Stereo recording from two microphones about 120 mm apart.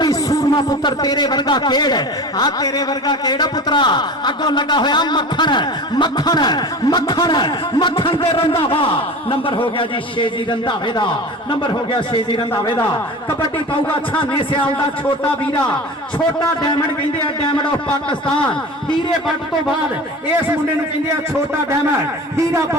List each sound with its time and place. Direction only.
0.0 s a man's voice: 30° left (ahead or behind)
14.2 s a man's voice: 45° left (ahead or behind)
16.1 s a man's voice: 40° left (ahead or behind)